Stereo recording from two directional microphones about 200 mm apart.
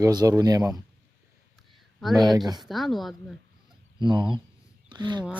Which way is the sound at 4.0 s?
20° right (ahead or behind).